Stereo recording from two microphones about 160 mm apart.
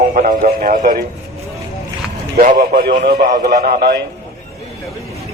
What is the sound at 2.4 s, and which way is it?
Speech, 60° right (ahead or behind).